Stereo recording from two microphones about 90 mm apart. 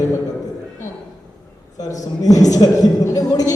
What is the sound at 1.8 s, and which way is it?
A woman's voice, 40° left (ahead or behind).